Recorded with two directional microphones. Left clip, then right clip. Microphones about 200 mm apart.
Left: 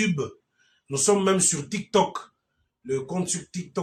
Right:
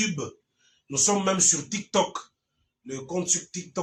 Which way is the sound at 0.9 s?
40° left (ahead or behind).